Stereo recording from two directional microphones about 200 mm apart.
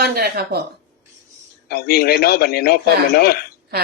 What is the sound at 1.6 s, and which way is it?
Speech, 50° left (ahead or behind).